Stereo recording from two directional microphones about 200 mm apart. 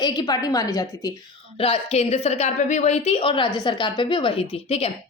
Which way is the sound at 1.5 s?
30° left (ahead or behind).